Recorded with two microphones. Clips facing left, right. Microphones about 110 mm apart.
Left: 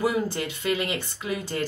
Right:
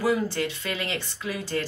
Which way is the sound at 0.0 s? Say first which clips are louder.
Right 1 dB; 15° left (ahead or behind).